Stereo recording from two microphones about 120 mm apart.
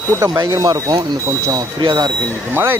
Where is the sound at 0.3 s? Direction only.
30° right (ahead or behind).